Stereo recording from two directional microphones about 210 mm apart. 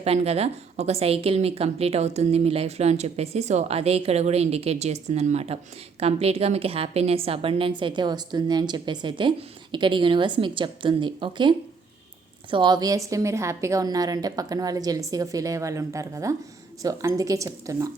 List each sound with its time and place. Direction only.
0.0 s a woman's voice: 30° right (ahead or behind)